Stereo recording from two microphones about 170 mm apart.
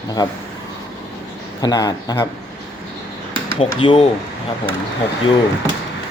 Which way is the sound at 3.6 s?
35° left (ahead or behind).